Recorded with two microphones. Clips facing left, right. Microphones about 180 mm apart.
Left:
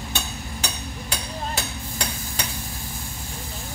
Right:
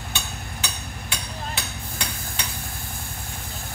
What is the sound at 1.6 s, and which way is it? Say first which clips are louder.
Stir: left 3 dB; 40° left (ahead or behind).